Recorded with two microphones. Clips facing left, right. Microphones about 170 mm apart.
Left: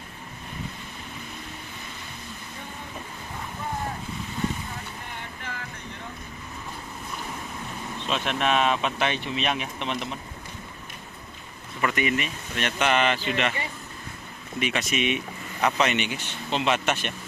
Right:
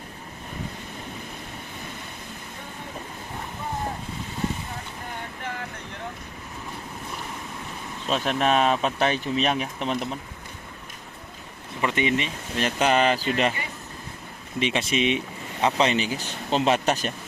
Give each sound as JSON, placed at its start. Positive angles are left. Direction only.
{"t": 8.1, "sound": "speech", "side_deg": -40}
{"t": 11.8, "sound": "speech", "side_deg": -25}
{"t": 14.6, "sound": "speech", "side_deg": -30}